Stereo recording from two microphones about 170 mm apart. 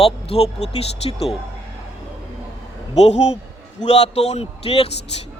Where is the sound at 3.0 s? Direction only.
40° left (ahead or behind).